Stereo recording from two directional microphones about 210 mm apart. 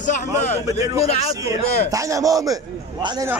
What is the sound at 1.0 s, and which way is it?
Speech, 30° left (ahead or behind).